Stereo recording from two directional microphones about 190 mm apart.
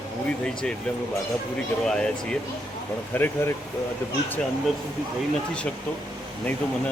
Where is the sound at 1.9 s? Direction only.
5° left (ahead or behind).